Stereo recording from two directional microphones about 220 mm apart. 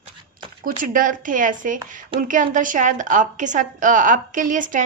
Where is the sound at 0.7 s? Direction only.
40° right (ahead or behind).